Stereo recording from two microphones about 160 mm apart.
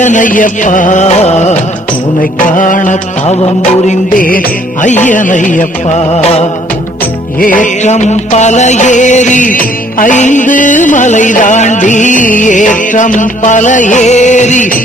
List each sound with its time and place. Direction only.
0.0 s music: 50° left (ahead or behind)
2.5 s music: 55° left (ahead or behind)
6.1 s music: 40° left (ahead or behind)
7.3 s music: 55° left (ahead or behind)